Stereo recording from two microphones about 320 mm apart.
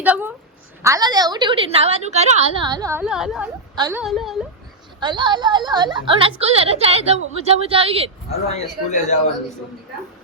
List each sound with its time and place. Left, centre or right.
0.0 s a woman's voice: centre
4.0 s a woman's voice: centre
4.9 s a woman's voice: centre
8.3 s a man's voice: left